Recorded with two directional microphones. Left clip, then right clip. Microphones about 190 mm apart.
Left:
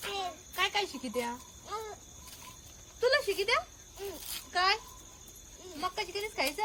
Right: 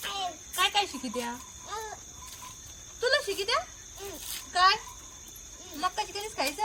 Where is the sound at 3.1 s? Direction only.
35° left (ahead or behind).